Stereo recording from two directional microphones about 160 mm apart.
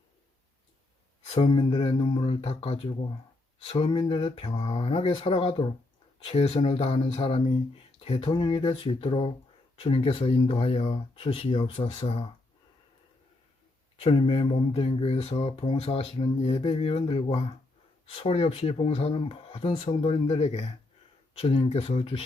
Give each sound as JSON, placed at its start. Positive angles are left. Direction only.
{"t": 1.3, "sound": "speech", "side_deg": 30}
{"t": 14.0, "sound": "speech", "side_deg": 35}